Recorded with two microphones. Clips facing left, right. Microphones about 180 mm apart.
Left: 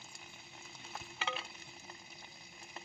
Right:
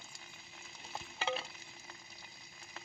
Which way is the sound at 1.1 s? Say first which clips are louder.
Right 5 dB; 35° right (ahead or behind).